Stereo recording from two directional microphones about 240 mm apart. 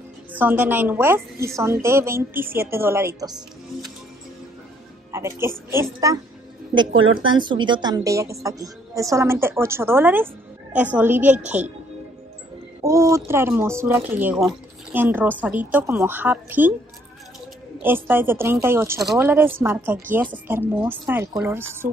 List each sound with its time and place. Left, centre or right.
0.3 s a woman's voice: centre
5.1 s a woman's voice: centre
6.9 s speech: right
7.2 s a woman's voice: centre
12.8 s a woman's voice: centre
17.8 s a woman's voice: centre